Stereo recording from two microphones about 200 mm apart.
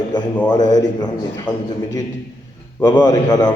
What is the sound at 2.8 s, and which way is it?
Speech, 20° left (ahead or behind).